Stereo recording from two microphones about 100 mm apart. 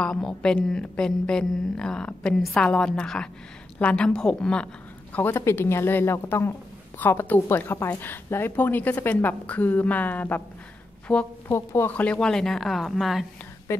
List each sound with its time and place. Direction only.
0.0 s speech: 5° left (ahead or behind)
5.1 s a woman's voice: 20° left (ahead or behind)
11.5 s a woman's voice: 25° left (ahead or behind)
12.0 s speech: 10° left (ahead or behind)
13.7 s a sound: 25° left (ahead or behind)